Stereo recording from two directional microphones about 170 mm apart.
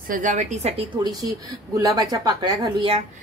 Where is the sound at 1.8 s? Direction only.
20° right (ahead or behind).